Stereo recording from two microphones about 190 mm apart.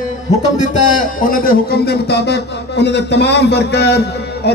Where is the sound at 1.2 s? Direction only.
50° left (ahead or behind).